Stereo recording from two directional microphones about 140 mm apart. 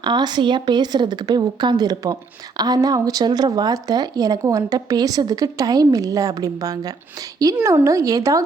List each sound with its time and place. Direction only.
0.0 s a woman's voice: 30° right (ahead or behind)